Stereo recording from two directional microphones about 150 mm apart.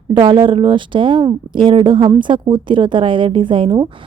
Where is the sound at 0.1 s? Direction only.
35° right (ahead or behind).